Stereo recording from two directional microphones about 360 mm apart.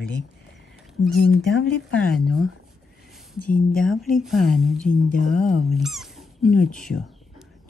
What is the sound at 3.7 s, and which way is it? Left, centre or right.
Speech, centre.